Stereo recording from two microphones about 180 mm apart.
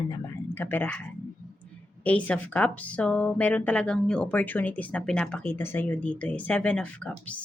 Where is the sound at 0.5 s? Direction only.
10° left (ahead or behind).